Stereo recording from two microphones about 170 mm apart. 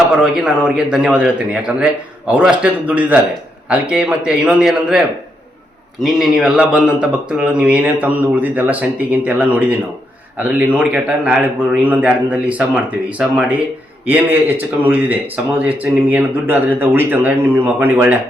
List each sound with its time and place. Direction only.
0.3 s a man's voice: 5° right (ahead or behind)